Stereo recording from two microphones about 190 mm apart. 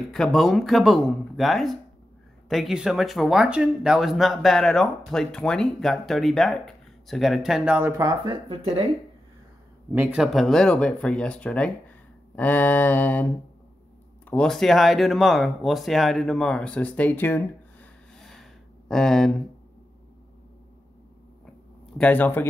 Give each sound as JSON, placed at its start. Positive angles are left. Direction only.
{"t": 0.1, "sound": "speech", "side_deg": 0}
{"t": 8.0, "sound": "speech", "side_deg": -25}
{"t": 9.9, "sound": "speech", "side_deg": -5}
{"t": 12.4, "sound": "mantra", "side_deg": 10}
{"t": 14.2, "sound": "speech", "side_deg": 5}
{"t": 21.9, "sound": "mantra", "side_deg": 5}